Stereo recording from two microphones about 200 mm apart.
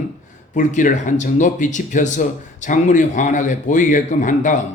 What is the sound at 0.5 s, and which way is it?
A man's voice, 40° left (ahead or behind).